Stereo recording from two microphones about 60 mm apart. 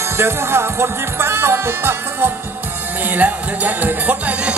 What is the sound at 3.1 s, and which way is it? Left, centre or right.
Music, right.